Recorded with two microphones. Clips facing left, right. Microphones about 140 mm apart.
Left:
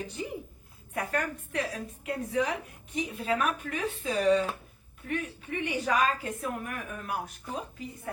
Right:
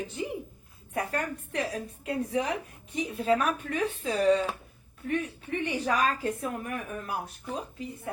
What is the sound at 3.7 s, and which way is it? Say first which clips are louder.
A woman's voice: right 2 dB; 35° right (ahead or behind).